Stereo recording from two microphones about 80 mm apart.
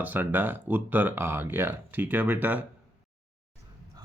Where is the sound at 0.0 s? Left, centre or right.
Right.